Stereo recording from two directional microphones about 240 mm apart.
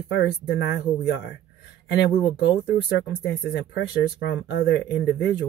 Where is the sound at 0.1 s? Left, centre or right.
Left.